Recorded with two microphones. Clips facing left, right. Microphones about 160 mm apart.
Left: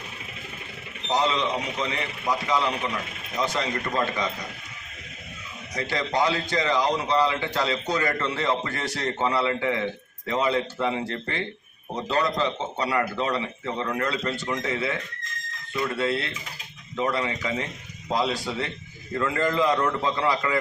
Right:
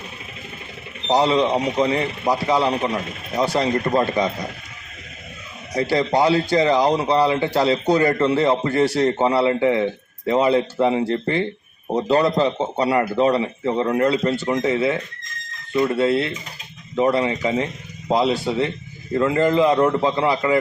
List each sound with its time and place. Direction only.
1.0 s speech: 35° right (ahead or behind)
5.7 s a man's voice: 35° right (ahead or behind)